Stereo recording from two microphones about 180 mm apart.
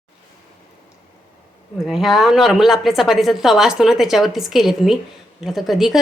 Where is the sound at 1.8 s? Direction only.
Centre (ahead or behind).